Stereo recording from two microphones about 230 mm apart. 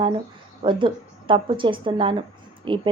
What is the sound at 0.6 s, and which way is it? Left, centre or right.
A woman's voice, right.